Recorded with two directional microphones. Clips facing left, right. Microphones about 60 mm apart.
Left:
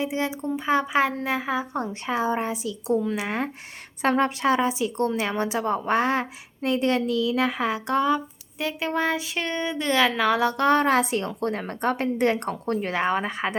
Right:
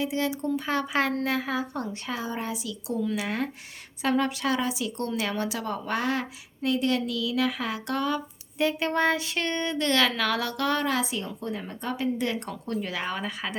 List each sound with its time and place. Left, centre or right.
0.0 s a woman's voice: left
4.0 s a woman's voice: left; by 8.6 s centre
8.6 s a sound: centre
10.6 s a woman's voice: left
11.0 s a woman's voice: left